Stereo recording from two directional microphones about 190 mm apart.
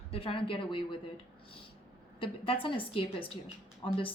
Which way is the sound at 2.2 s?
30° left (ahead or behind).